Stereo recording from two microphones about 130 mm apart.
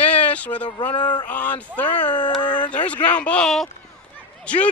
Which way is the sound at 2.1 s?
35° left (ahead or behind).